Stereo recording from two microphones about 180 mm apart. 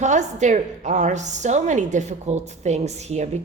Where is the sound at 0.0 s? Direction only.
40° right (ahead or behind).